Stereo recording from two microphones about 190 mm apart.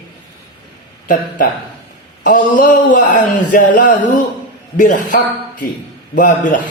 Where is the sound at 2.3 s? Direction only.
45° left (ahead or behind).